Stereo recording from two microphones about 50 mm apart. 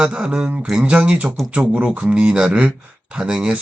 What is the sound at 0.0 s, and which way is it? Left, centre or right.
Speech, centre.